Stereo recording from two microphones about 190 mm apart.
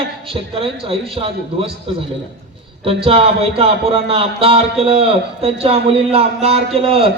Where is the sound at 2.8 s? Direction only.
30° right (ahead or behind).